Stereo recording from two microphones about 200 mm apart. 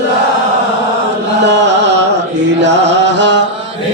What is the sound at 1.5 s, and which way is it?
Carnatic music, 60° right (ahead or behind).